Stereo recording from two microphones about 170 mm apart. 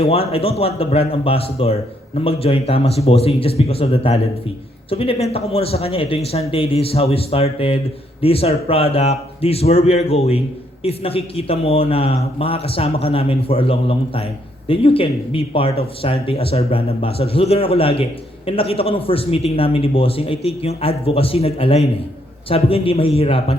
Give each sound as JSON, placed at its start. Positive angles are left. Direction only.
{"t": 0.0, "sound": "speech", "side_deg": 35}